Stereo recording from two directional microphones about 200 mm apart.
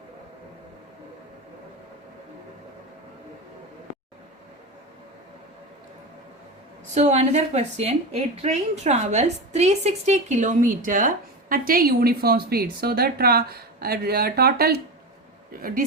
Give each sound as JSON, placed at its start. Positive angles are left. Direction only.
{"t": 6.9, "sound": "a woman's voice", "side_deg": -35}